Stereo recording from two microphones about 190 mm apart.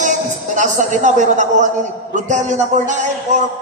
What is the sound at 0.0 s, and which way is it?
A man's voice, 40° right (ahead or behind).